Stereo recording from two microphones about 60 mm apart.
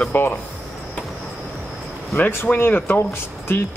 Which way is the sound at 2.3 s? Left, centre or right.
Left.